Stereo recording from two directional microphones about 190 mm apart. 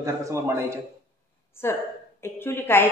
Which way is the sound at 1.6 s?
15° left (ahead or behind).